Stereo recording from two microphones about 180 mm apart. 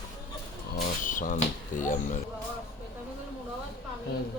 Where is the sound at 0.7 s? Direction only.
45° left (ahead or behind).